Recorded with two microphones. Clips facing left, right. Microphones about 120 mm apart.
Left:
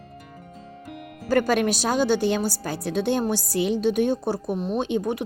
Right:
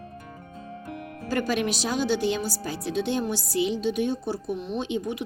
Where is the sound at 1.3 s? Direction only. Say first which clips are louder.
Left 5 dB; 50° left (ahead or behind).